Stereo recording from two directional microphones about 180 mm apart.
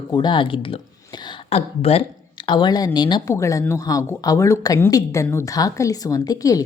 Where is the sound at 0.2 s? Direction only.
25° left (ahead or behind).